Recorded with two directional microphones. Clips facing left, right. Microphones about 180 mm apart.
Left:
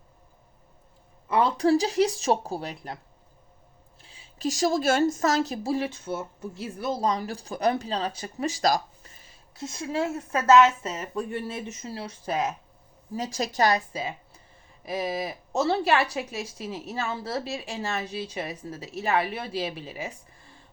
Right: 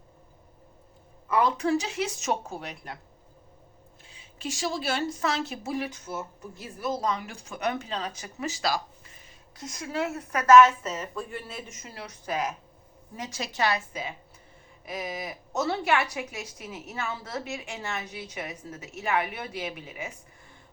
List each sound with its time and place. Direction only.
1.3 s speech: 30° left (ahead or behind)
4.0 s speech: 35° left (ahead or behind)
9.6 s a woman's voice: 25° left (ahead or behind)